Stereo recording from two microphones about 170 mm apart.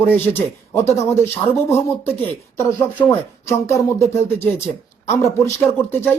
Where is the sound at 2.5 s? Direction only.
15° left (ahead or behind).